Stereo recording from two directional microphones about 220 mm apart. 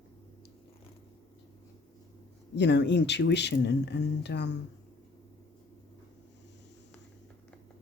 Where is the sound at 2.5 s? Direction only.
50° left (ahead or behind).